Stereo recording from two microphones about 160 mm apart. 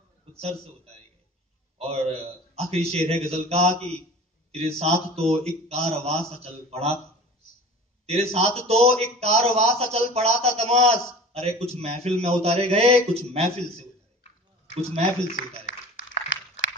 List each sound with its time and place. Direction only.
1.8 s a man's voice: 40° right (ahead or behind)
8.1 s a man's voice: 40° right (ahead or behind)
14.7 s speech: 40° right (ahead or behind)